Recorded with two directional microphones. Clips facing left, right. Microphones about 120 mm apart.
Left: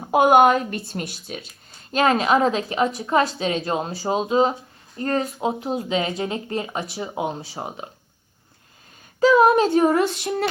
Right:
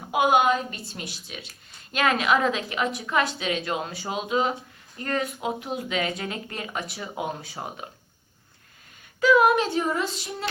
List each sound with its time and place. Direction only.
0.1 s a woman's voice: 45° left (ahead or behind); by 7.9 s 25° left (ahead or behind)
9.2 s a woman's voice: 30° left (ahead or behind)
9.6 s child singing: 50° left (ahead or behind)